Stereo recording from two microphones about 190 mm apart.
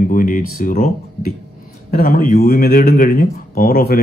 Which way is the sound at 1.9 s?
50° left (ahead or behind).